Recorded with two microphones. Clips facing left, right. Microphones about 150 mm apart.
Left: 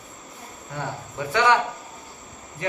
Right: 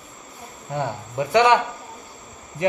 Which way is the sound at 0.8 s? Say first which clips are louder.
Right 5 dB; 20° right (ahead or behind).